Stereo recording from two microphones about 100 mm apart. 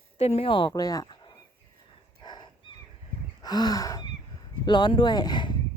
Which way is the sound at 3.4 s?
40° left (ahead or behind).